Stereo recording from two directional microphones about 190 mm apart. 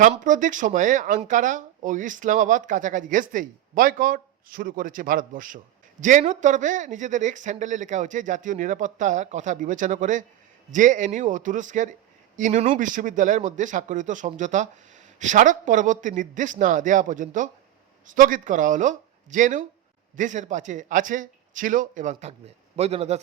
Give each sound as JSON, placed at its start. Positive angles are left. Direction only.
{"t": 0.0, "sound": "speech", "side_deg": -45}